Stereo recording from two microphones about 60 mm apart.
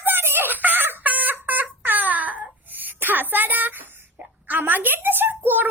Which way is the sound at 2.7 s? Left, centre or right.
Right.